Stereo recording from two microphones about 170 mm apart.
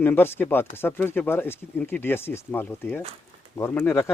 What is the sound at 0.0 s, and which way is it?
Speech, 15° left (ahead or behind).